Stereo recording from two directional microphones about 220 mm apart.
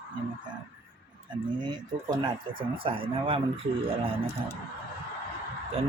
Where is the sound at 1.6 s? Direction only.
20° right (ahead or behind).